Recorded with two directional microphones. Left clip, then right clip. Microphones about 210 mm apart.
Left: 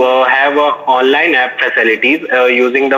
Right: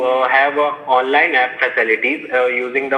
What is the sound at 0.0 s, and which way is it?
A man's voice, 60° left (ahead or behind).